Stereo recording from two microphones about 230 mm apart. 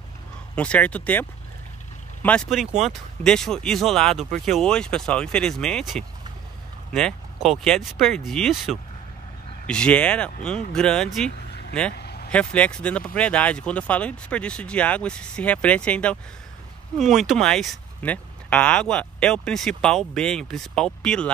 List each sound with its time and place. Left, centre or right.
0.6 s speech: centre
2.2 s speech: centre
11.9 s vehicle: left
12.3 s speech: centre